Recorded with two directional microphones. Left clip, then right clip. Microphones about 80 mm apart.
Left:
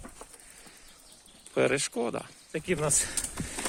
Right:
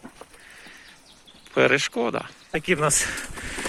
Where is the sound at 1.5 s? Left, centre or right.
Left.